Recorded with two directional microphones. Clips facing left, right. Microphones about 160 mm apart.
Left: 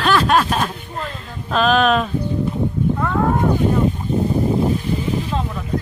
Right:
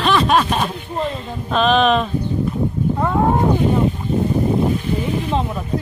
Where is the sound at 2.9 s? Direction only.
25° right (ahead or behind).